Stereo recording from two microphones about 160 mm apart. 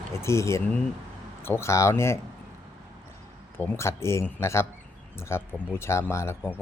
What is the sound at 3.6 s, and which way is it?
Speech, 15° left (ahead or behind).